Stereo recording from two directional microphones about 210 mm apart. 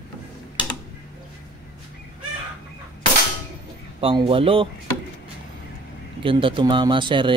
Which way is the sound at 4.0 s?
25° right (ahead or behind).